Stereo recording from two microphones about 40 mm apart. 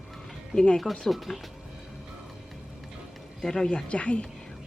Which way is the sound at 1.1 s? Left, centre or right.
Centre.